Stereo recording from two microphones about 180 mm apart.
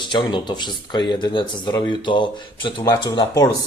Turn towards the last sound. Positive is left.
turn(degrees=20)  # may be behind; listen again after turning